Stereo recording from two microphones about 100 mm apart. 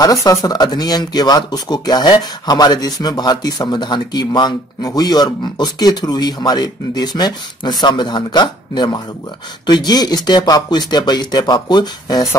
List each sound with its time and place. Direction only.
0.0 s speech: 35° left (ahead or behind)